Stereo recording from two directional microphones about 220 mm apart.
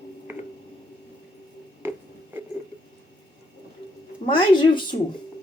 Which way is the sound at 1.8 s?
10° right (ahead or behind).